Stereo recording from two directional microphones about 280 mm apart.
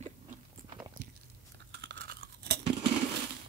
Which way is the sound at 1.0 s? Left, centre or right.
Right.